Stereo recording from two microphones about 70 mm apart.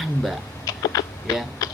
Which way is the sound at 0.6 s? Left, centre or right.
Left.